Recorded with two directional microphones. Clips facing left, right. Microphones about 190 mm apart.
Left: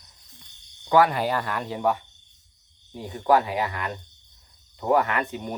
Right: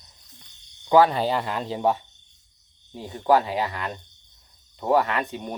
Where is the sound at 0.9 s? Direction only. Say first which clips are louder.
Right 2 dB; 25° right (ahead or behind).